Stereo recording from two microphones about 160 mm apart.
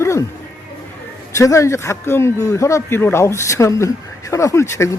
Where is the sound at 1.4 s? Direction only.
20° left (ahead or behind).